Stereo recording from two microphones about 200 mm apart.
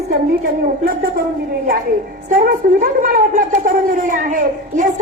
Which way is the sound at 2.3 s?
40° right (ahead or behind).